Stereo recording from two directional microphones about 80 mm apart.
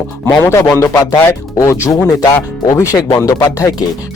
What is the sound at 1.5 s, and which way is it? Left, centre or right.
Speech, left.